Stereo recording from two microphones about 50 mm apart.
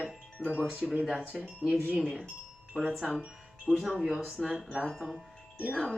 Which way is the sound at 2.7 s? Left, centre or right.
Centre.